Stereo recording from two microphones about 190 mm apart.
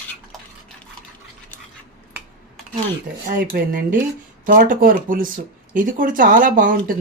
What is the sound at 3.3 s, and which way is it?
Speech, 50° right (ahead or behind).